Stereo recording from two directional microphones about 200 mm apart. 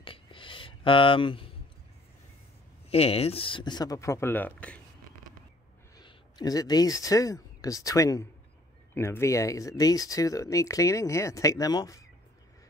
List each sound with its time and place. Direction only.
0.0 s a sound: 25° left (ahead or behind)
2.9 s speech: 30° left (ahead or behind); by 4.7 s 5° left (ahead or behind)
5.9 s speech: 20° left (ahead or behind)